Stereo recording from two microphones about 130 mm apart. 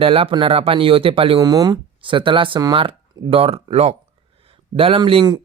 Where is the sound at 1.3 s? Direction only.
30° right (ahead or behind).